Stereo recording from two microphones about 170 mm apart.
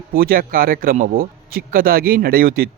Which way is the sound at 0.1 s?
60° right (ahead or behind).